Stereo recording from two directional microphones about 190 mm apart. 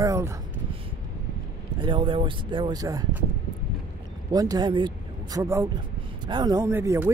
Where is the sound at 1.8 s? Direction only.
25° right (ahead or behind).